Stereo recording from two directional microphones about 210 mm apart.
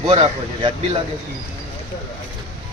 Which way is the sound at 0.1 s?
25° right (ahead or behind).